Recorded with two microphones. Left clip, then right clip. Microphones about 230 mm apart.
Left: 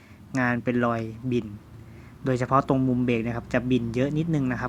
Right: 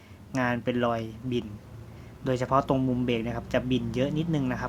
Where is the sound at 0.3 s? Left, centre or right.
Centre.